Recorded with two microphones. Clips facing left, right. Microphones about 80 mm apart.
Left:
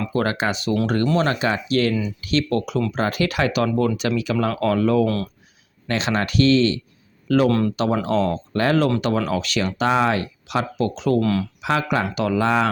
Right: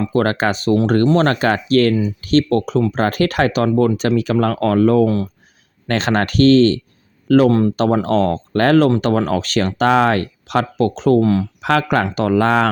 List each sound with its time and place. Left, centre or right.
0.0 s speech: right
1.1 s speech: right
5.0 s speech: right
5.9 s speech: right
11.2 s speech: right
11.6 s speech: right